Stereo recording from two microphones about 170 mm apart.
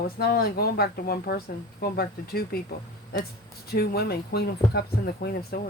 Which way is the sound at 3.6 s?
65° left (ahead or behind).